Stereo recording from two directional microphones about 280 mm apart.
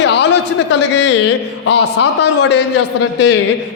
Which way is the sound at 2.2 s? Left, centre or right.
Left.